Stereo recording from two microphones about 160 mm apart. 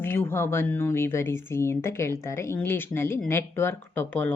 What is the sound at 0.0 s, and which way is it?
Speech, 15° left (ahead or behind).